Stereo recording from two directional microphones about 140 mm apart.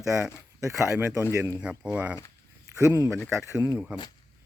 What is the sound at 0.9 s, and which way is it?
Speech, 20° right (ahead or behind).